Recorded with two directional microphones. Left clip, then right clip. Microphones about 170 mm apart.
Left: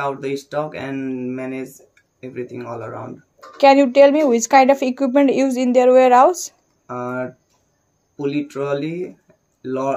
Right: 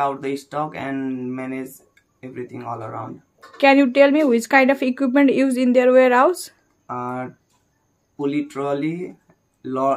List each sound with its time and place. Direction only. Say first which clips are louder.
0.0 s speech: right 1 dB; 5° left (ahead or behind)
3.5 s speech: left 3 dB; 15° right (ahead or behind)
6.9 s speech: left 2 dB; 5° left (ahead or behind)